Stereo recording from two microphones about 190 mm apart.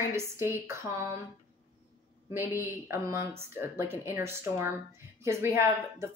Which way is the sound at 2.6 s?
15° right (ahead or behind).